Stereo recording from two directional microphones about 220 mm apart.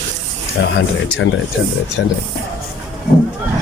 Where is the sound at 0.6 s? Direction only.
55° left (ahead or behind).